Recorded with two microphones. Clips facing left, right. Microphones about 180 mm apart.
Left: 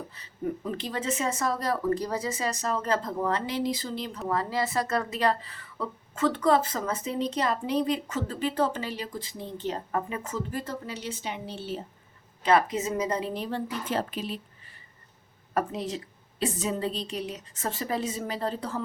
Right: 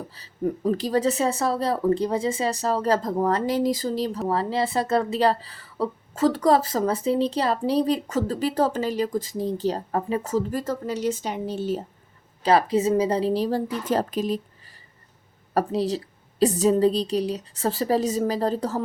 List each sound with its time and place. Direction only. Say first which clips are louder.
0.1 s speech: right 7 dB; 35° right (ahead or behind)
12.4 s speech: right 4 dB; 35° right (ahead or behind)
15.5 s speech: right 6 dB; 35° right (ahead or behind)